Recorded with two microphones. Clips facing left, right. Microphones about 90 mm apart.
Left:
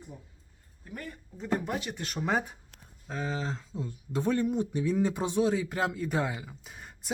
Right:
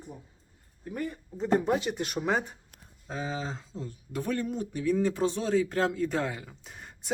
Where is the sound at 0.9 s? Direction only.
25° right (ahead or behind).